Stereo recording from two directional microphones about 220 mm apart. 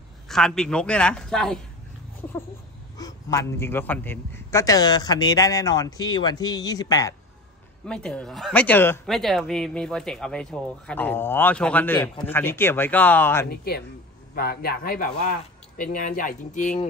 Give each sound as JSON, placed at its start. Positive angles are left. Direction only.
{"t": 0.3, "sound": "speech", "side_deg": 0}
{"t": 3.0, "sound": "a man's voice", "side_deg": 15}
{"t": 7.8, "sound": "a man's voice", "side_deg": 5}
{"t": 13.5, "sound": "a man's voice", "side_deg": 45}